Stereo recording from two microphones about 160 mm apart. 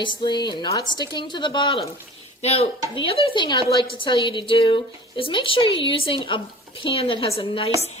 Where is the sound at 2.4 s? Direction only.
40° left (ahead or behind).